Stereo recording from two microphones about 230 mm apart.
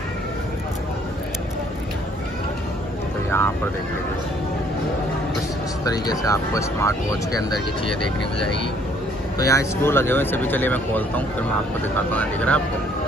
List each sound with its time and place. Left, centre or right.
3.3 s vehicle: centre
5.9 s speech: centre
9.4 s speech: centre